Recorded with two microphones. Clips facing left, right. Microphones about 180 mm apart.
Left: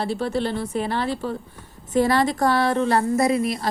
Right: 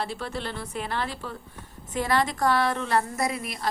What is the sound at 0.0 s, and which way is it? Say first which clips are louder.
A woman's voice: left 8 dB; 30° left (ahead or behind).